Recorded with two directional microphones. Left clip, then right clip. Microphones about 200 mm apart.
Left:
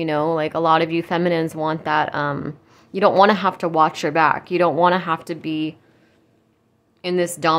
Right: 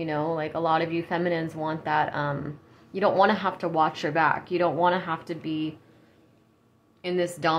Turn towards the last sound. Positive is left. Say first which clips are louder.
# left 6 dB
turn(degrees=30)  # may be behind; listen again after turning